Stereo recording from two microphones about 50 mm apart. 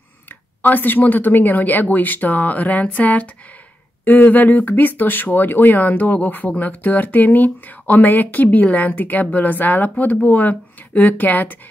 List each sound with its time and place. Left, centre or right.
0.6 s speech: left